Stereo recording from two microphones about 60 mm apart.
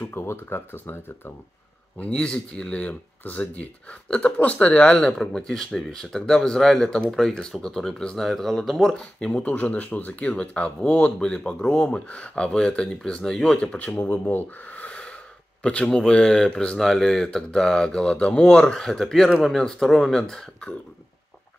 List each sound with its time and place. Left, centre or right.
0.0 s speech: left
2.0 s speech: centre
8.9 s speech: centre
9.4 s speech: left
13.9 s speech: left
14.3 s a sound: left
15.6 s speech: centre